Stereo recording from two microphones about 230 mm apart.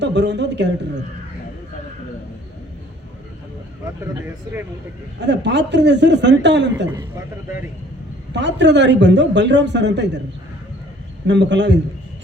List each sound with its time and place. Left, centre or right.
0.0 s a man's voice: right
5.2 s a man's voice: right
8.3 s a man's voice: right
11.3 s a man's voice: right